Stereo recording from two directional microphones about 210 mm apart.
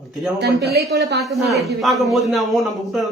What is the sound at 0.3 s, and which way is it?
Speech, 55° right (ahead or behind).